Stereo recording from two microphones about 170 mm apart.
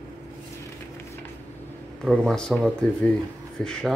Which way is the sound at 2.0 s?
Centre (ahead or behind).